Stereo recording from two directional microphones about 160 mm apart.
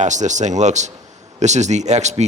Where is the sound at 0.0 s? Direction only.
50° right (ahead or behind).